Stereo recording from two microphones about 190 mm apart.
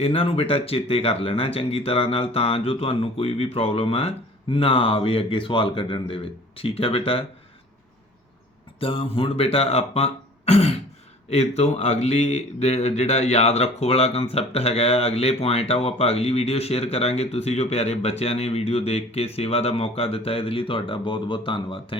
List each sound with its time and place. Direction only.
0.0 s speech: 30° left (ahead or behind)
8.8 s speech: 30° left (ahead or behind)